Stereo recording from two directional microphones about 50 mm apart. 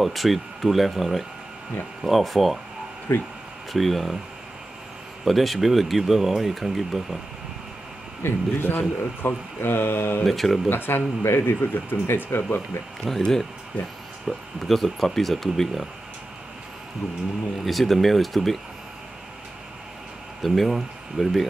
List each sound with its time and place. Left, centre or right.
0.0 s speech: centre
3.1 s speech: left
3.7 s speech: centre
5.2 s speech: centre
8.2 s speech: left
10.2 s speech: centre
10.7 s speech: left
13.0 s speech: centre
17.6 s speech: centre
20.4 s speech: centre